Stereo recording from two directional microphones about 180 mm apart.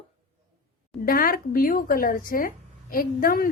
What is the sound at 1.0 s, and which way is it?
A woman's voice, 55° left (ahead or behind).